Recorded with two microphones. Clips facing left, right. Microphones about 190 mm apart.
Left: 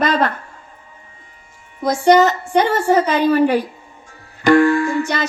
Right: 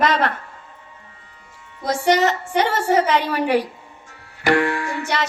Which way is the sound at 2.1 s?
70° right (ahead or behind).